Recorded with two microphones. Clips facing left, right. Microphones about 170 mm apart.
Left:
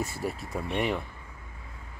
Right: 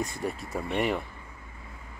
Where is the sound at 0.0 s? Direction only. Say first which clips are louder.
Even; 5° left (ahead or behind).